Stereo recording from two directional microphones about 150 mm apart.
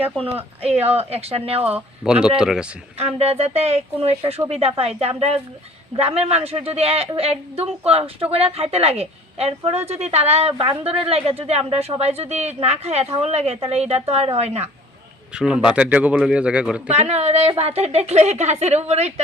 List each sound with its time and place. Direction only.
0.6 s a woman's voice: 45° right (ahead or behind)
1.6 s speech: 10° right (ahead or behind)
3.2 s a woman's voice: 45° right (ahead or behind)
15.3 s speech: 5° right (ahead or behind)
16.9 s a woman's voice: 45° right (ahead or behind)